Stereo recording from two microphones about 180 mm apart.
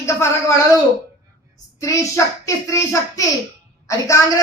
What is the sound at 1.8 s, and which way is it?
A woman's voice, 15° left (ahead or behind).